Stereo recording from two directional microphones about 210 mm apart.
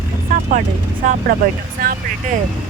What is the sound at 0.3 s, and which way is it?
Vehicle, 40° right (ahead or behind).